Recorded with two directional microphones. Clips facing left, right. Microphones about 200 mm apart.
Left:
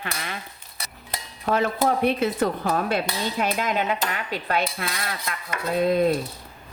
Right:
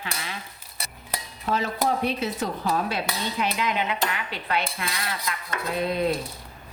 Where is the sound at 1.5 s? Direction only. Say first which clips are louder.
Left 3 dB; 55° left (ahead or behind).